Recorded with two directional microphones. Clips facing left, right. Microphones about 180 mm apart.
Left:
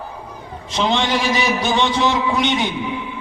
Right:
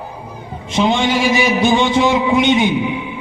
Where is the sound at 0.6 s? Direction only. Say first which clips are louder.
Right 4 dB; 25° right (ahead or behind).